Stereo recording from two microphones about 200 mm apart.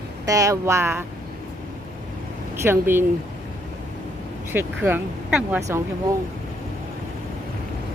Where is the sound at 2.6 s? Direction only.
10° right (ahead or behind).